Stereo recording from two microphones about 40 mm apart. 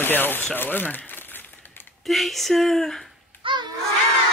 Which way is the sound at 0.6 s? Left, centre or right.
Left.